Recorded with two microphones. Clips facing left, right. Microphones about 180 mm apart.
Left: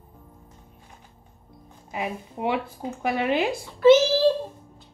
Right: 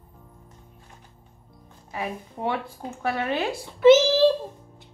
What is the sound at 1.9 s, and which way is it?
Speech, 15° left (ahead or behind).